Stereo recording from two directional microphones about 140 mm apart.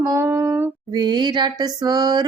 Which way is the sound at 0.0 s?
20° right (ahead or behind).